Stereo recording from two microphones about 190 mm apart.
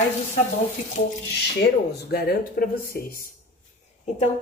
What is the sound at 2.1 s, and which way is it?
Speech, 50° left (ahead or behind).